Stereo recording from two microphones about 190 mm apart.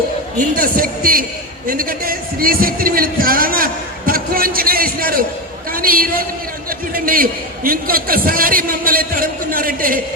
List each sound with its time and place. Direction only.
0.3 s a man's voice: 50° right (ahead or behind)
1.6 s a sound: 50° right (ahead or behind)
5.7 s a man's voice: 50° right (ahead or behind)